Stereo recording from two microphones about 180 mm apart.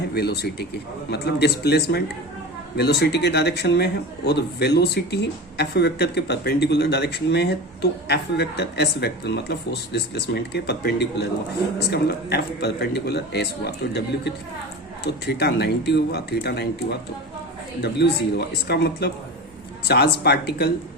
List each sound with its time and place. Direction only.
0.1 s speech: 65° left (ahead or behind)